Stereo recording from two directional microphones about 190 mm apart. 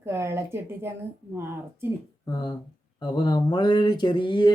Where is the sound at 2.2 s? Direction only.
20° left (ahead or behind).